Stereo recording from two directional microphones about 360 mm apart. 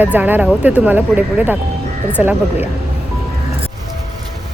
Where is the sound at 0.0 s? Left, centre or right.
Centre.